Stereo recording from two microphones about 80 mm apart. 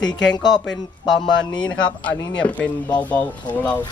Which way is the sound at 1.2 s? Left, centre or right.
Left.